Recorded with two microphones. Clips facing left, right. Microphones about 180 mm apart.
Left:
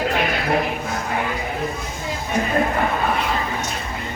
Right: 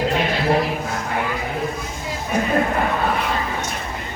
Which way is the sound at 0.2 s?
30° right (ahead or behind).